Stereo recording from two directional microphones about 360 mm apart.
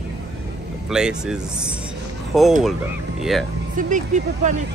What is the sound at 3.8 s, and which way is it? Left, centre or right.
Speech, right.